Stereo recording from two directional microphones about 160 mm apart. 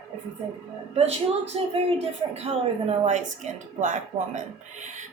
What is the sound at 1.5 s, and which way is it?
Speech, 40° right (ahead or behind).